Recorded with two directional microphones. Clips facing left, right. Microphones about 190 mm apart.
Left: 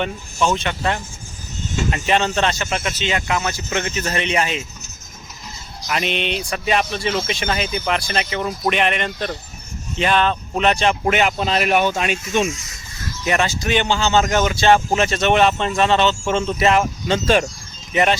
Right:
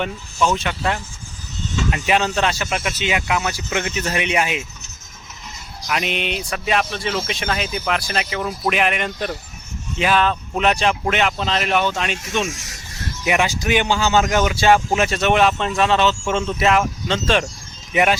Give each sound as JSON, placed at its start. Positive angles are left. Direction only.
{"t": 0.4, "sound": "speech", "side_deg": -5}
{"t": 1.6, "sound": "a sound", "side_deg": 45}
{"t": 1.9, "sound": "speech", "side_deg": -5}
{"t": 5.9, "sound": "speech", "side_deg": 0}
{"t": 13.2, "sound": "speech", "side_deg": -10}
{"t": 17.9, "sound": "speech", "side_deg": -10}